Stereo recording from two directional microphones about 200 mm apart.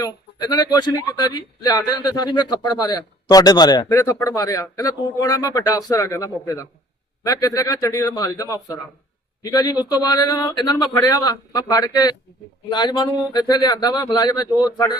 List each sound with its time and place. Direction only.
0.0 s a man's voice: 20° left (ahead or behind)